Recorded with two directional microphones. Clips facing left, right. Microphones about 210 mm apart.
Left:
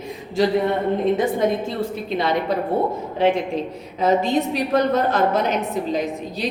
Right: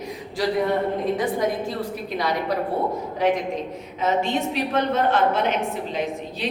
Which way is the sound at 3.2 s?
25° left (ahead or behind).